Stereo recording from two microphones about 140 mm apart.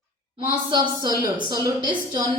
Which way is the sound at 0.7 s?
30° right (ahead or behind).